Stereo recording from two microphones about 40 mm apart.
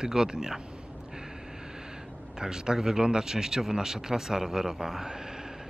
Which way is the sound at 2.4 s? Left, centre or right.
Centre.